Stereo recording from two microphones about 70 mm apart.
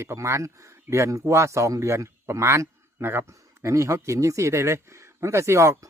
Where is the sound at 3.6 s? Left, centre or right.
Right.